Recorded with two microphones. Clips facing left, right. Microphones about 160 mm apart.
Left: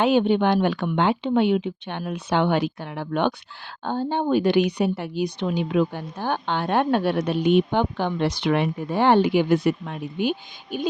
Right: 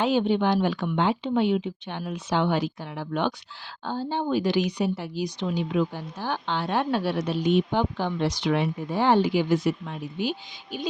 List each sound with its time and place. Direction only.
0.0 s speech: 65° left (ahead or behind)